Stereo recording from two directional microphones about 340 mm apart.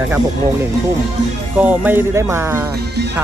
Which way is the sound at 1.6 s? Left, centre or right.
Centre.